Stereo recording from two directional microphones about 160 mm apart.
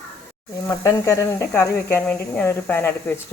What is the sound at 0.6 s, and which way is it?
Speech, 20° left (ahead or behind).